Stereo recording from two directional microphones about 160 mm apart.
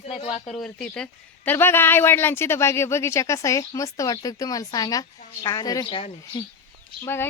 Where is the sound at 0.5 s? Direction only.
5° left (ahead or behind); by 6.4 s 30° left (ahead or behind).